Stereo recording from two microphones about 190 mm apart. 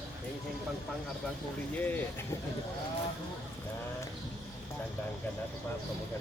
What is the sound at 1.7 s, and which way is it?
Speech, 10° left (ahead or behind).